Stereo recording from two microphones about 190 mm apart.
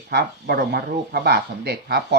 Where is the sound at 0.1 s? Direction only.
55° right (ahead or behind).